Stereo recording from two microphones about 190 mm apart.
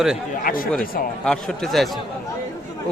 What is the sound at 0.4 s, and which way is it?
Speech, 50° left (ahead or behind).